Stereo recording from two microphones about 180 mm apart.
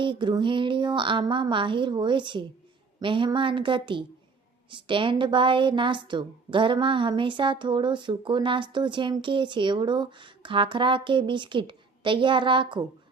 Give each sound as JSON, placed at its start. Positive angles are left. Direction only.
{"t": 0.0, "sound": "a woman's voice", "side_deg": -25}